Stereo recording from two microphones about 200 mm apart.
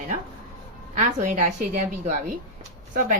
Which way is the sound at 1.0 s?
40° right (ahead or behind).